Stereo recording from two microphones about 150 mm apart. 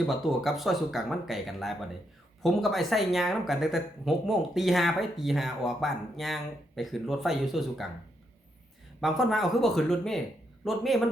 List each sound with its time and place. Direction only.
0.1 s speech: centre (ahead or behind)
9.0 s a man's voice: centre (ahead or behind)